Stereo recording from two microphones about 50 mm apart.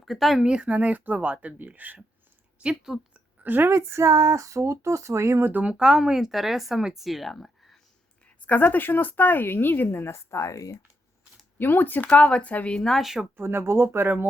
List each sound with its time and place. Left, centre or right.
0.0 s speech: centre
0.3 s speech: right
2.6 s speech: centre
3.4 s a woman's voice: right
3.7 s speech: right
5.6 s speech: centre
8.4 s speech: left
11.5 s speech: left
12.7 s speech: centre
13.0 s speech: centre
13.3 s speech: right